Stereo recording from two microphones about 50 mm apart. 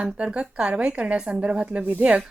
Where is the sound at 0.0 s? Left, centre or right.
Right.